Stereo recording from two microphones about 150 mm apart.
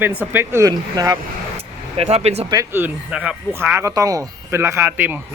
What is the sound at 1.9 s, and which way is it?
Speech, 45° right (ahead or behind).